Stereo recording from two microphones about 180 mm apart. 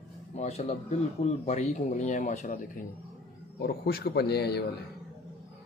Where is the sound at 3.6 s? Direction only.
60° left (ahead or behind).